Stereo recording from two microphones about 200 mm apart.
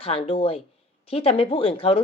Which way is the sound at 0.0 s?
30° left (ahead or behind).